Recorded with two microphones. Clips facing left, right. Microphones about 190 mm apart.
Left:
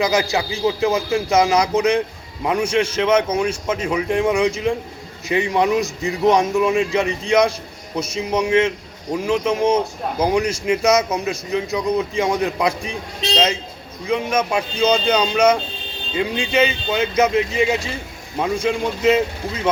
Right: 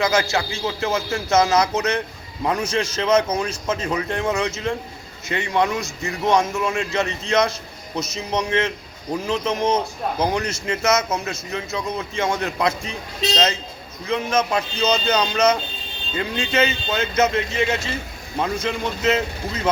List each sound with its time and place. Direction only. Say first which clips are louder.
0.0 s a man's voice: left 2 dB; 15° left (ahead or behind)